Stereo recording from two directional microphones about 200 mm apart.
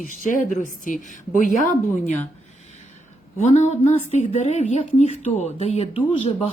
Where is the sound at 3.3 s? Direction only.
35° left (ahead or behind).